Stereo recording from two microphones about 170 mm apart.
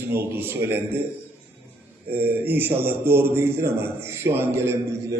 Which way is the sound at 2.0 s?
10° right (ahead or behind).